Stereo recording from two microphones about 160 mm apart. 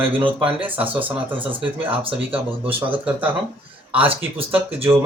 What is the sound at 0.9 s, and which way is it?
Speech, 10° right (ahead or behind).